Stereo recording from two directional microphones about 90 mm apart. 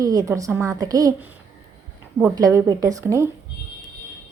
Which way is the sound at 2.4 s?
45° right (ahead or behind).